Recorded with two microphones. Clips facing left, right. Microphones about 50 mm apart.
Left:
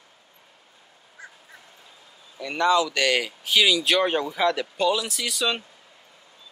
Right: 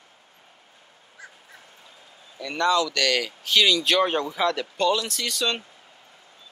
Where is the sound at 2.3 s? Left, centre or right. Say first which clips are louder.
Left 1 dB; centre.